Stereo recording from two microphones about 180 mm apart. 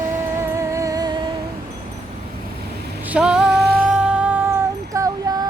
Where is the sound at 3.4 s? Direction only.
65° right (ahead or behind).